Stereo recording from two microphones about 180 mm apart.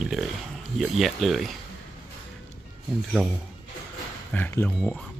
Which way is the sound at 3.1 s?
5° left (ahead or behind).